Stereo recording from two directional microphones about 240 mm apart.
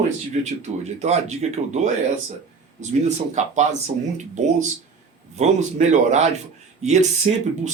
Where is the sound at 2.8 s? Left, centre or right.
Right.